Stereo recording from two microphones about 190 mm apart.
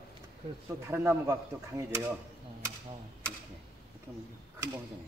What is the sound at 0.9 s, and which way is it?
Speech, 15° right (ahead or behind).